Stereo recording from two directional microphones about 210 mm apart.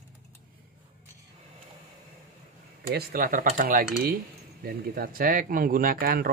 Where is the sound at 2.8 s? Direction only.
45° right (ahead or behind).